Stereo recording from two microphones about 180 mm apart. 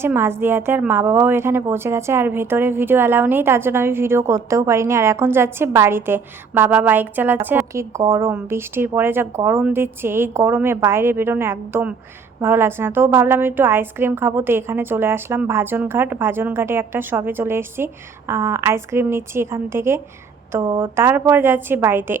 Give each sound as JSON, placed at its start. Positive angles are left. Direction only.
{"t": 0.0, "sound": "a woman's voice", "side_deg": -15}